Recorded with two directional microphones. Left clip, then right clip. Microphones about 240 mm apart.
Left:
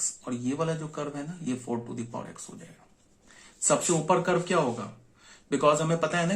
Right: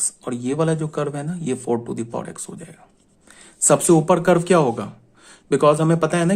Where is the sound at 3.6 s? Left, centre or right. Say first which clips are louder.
Right 10 dB; right.